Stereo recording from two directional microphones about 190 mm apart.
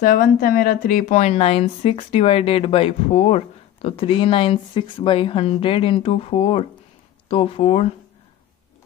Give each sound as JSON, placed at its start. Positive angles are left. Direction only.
{"t": 0.0, "sound": "a woman's voice", "side_deg": 50}